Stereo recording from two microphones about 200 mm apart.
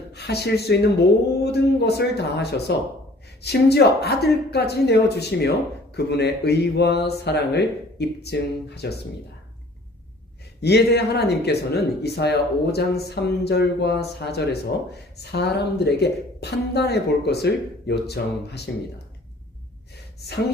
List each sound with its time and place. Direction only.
0.1 s a woman's voice: 55° left (ahead or behind)
10.6 s a woman's voice: 55° left (ahead or behind)